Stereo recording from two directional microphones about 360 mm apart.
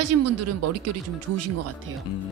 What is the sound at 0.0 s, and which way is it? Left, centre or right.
Speech, right.